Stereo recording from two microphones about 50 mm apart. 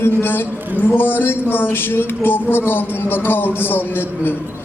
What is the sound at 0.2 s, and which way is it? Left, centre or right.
A man's voice, left.